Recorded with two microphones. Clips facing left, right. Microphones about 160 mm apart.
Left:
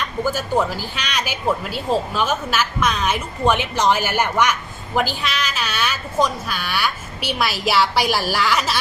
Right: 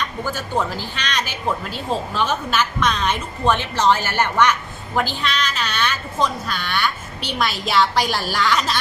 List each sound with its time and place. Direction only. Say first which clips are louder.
0.3 s speech: left 1 dB; 10° left (ahead or behind)